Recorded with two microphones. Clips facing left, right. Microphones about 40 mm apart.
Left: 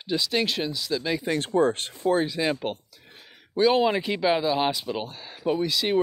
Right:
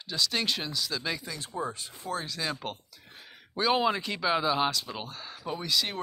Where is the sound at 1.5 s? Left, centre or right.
Left.